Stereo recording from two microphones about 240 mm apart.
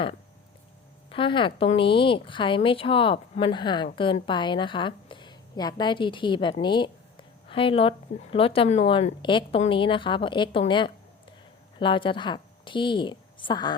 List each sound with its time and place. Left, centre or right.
1.1 s a woman's voice: left